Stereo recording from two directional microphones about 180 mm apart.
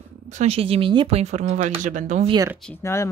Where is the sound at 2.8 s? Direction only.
15° left (ahead or behind).